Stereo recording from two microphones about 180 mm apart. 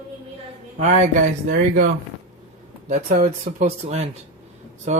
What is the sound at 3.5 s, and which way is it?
Speech, 35° right (ahead or behind).